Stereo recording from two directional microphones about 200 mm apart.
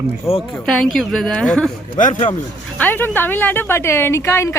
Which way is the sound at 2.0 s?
40° left (ahead or behind).